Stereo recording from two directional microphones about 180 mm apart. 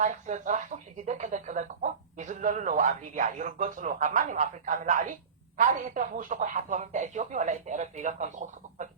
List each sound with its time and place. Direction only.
0.0 s speech: 40° right (ahead or behind)